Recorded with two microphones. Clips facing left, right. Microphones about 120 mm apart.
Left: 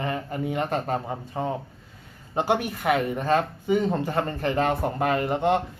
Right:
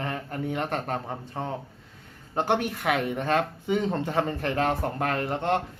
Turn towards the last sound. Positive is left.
turn(degrees=5)  # may be behind; listen again after turning